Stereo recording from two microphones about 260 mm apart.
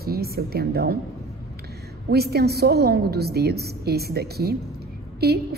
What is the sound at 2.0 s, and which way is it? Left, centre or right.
A woman's voice, right.